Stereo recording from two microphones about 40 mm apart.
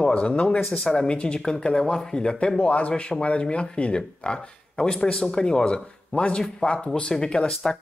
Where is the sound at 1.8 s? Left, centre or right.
Centre.